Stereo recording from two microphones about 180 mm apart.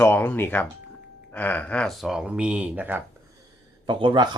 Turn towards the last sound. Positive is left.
turn(degrees=-25)  # may be behind; listen again after turning